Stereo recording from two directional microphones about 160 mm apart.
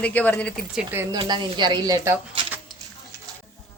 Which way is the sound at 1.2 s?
30° right (ahead or behind).